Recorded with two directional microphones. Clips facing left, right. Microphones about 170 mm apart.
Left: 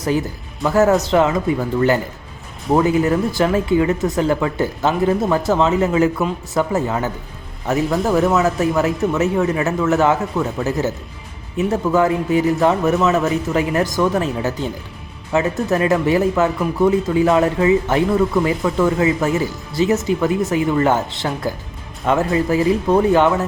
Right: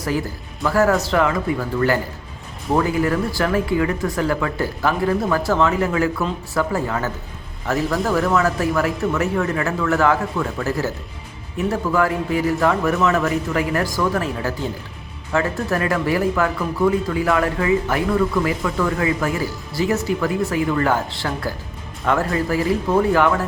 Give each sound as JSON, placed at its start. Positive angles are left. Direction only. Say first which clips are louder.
{"t": 0.0, "sound": "speech", "louder": "left 3 dB", "side_deg": 20}